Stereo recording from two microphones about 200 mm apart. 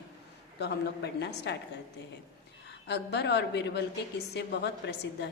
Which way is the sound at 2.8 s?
60° left (ahead or behind).